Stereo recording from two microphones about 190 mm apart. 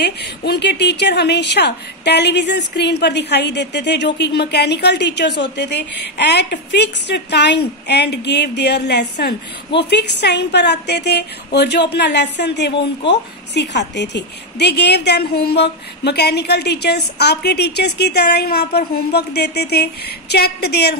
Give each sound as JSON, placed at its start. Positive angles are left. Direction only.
{"t": 0.0, "sound": "a woman's voice", "side_deg": 60}